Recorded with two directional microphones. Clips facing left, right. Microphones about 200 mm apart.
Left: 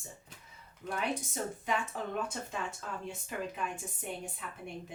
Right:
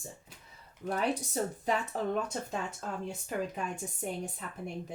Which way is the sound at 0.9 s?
35° right (ahead or behind).